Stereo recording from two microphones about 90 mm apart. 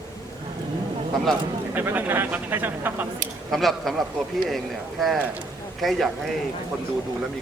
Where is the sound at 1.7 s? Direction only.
20° right (ahead or behind).